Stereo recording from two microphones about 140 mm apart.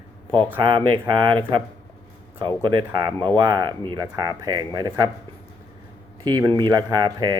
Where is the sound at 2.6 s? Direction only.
30° right (ahead or behind).